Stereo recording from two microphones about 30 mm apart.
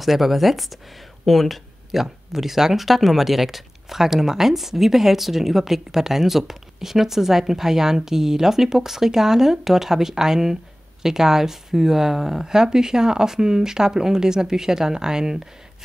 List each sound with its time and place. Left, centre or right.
0.0 s speech: centre
1.9 s speech: centre
12.4 s speech: right